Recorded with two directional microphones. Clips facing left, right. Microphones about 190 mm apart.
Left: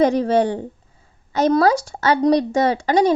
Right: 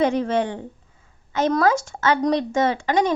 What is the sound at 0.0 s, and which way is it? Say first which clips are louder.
Speech: left 4 dB; 35° left (ahead or behind).